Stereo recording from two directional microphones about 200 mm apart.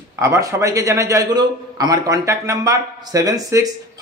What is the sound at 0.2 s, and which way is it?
A man's voice, 15° right (ahead or behind).